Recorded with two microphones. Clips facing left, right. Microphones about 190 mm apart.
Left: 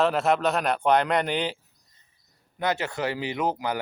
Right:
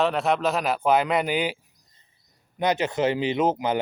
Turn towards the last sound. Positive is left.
turn(degrees=-20)  # may be behind; listen again after turning